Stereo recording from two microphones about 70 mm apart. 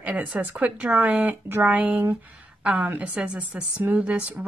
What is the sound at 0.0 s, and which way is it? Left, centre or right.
A woman's voice, right.